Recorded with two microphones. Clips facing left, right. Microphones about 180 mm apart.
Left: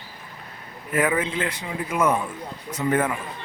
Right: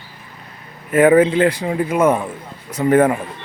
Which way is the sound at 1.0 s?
60° right (ahead or behind).